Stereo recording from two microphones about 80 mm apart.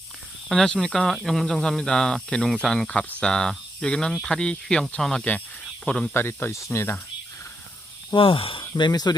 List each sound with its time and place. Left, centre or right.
0.4 s speech: centre
6.1 s speech: left
8.1 s speech: left
8.6 s speech: left